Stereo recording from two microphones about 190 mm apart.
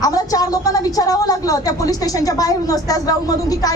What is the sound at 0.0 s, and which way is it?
A woman's voice, 20° left (ahead or behind).